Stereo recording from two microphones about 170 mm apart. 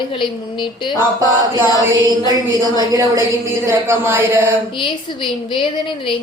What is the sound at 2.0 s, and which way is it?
A woman's voice, 25° right (ahead or behind).